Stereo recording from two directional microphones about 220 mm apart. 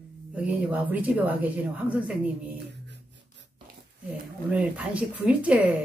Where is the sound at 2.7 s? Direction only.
50° right (ahead or behind).